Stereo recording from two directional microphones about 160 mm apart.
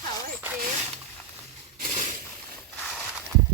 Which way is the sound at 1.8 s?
50° right (ahead or behind).